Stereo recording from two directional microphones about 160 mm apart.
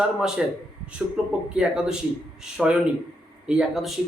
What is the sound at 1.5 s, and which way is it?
Speech, 5° right (ahead or behind).